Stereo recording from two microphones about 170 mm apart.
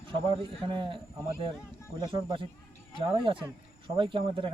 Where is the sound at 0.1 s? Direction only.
30° right (ahead or behind).